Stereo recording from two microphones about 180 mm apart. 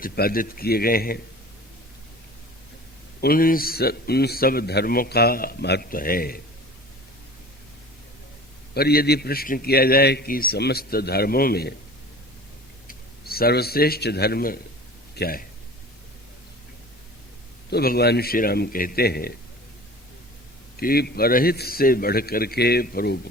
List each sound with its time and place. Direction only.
0.0 s a man's voice: 55° left (ahead or behind)
3.2 s a man's voice: 55° left (ahead or behind)
8.7 s a man's voice: 60° left (ahead or behind)
12.9 s a man's voice: 55° left (ahead or behind)
17.7 s a man's voice: 60° left (ahead or behind)
20.7 s a man's voice: 55° left (ahead or behind)